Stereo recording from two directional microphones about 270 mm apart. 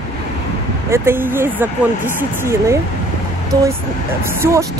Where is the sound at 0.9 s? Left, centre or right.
Centre.